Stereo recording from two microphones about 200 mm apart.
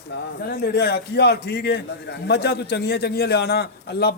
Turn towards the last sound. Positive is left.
turn(degrees=55)  # may be behind; listen again after turning